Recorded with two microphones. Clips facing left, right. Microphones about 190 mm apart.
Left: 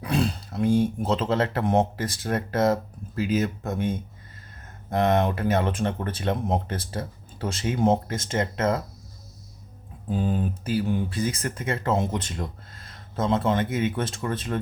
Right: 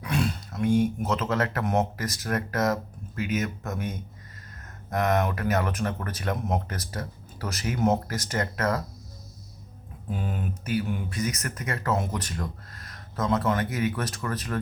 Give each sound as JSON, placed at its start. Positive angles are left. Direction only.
{"t": 0.0, "sound": "speech", "side_deg": 30}
{"t": 10.1, "sound": "speech", "side_deg": 30}